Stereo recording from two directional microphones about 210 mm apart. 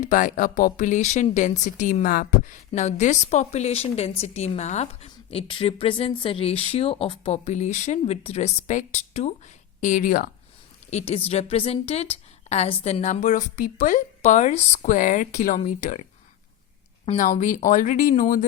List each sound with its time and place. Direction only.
0.0 s speech: 40° left (ahead or behind)
10.9 s a woman's voice: 30° left (ahead or behind)
17.1 s speech: 35° left (ahead or behind)